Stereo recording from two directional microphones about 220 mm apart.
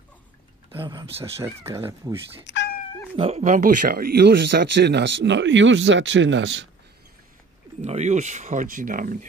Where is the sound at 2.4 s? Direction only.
55° left (ahead or behind).